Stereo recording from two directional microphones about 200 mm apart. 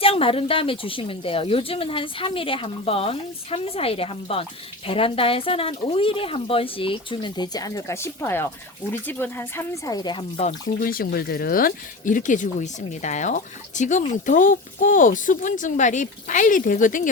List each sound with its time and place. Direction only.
0.0 s speech: 30° left (ahead or behind)